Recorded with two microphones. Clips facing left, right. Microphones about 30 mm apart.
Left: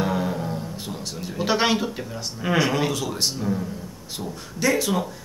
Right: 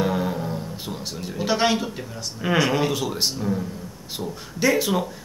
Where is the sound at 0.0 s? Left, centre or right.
Centre.